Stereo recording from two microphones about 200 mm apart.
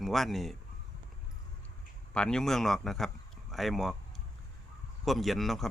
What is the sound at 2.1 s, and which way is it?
A man's voice, 5° left (ahead or behind).